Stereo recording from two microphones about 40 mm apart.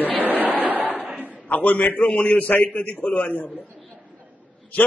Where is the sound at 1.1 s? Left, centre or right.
Right.